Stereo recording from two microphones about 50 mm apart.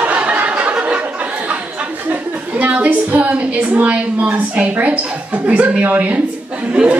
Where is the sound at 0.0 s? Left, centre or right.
Right.